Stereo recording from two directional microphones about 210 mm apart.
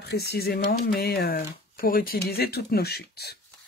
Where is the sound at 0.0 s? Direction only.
50° left (ahead or behind).